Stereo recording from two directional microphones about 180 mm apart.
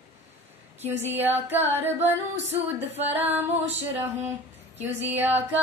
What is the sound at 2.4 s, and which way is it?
Music, 35° right (ahead or behind).